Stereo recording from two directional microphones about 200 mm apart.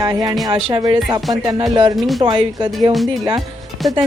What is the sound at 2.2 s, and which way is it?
Speech, 25° right (ahead or behind).